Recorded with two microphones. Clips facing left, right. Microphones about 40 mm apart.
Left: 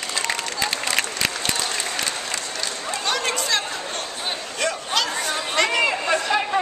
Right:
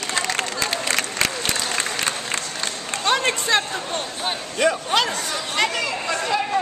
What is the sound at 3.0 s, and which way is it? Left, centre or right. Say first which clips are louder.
Chatter: right 4 dB; right.